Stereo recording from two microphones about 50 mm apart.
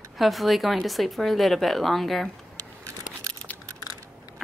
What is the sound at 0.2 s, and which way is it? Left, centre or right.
Speech, centre.